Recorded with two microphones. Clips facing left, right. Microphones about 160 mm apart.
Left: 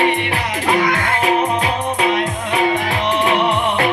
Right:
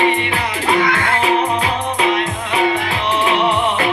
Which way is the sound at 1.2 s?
50° left (ahead or behind).